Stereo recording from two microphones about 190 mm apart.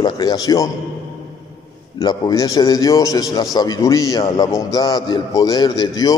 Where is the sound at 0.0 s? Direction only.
20° left (ahead or behind).